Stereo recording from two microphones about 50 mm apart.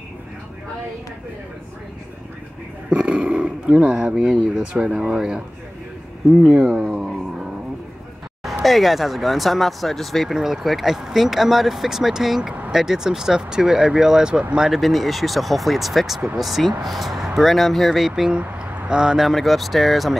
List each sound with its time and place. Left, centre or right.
2.9 s speech: right
6.4 s speech: right
8.6 s speech: centre
10.3 s speech: centre
14.7 s speech: centre
18.0 s speech: centre
19.2 s speech: centre